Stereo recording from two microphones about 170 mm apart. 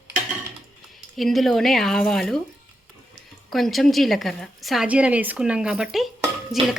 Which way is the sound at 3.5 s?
Centre (ahead or behind).